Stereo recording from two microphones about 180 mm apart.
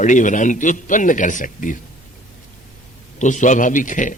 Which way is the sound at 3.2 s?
45° left (ahead or behind).